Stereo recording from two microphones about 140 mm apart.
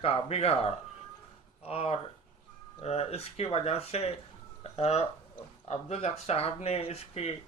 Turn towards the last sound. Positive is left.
turn(degrees=45)  # may be behind; listen again after turning